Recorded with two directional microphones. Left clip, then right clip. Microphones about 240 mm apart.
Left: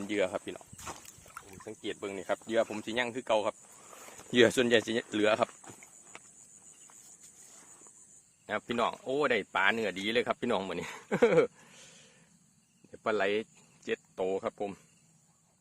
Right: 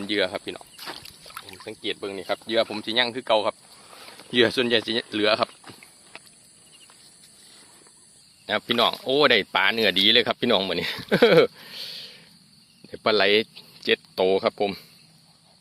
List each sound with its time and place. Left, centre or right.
0.1 s speech: centre
1.3 s speech: centre
8.4 s speech: centre
9.1 s speech: centre